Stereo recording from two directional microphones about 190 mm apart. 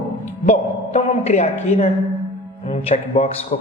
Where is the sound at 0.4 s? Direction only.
35° left (ahead or behind).